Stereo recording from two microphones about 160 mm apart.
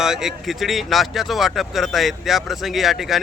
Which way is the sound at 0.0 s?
5° right (ahead or behind).